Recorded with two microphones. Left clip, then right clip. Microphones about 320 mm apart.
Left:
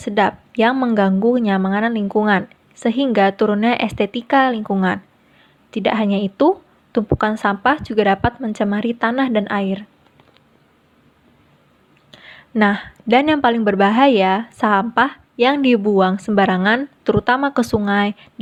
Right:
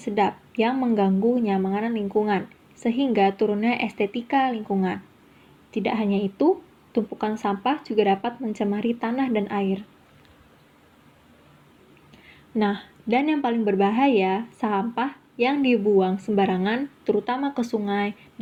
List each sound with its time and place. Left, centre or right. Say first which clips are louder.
0.0 s a woman's voice: left 6 dB; left
12.1 s a sound: left 7 dB; left
13.1 s speech: left 8 dB; left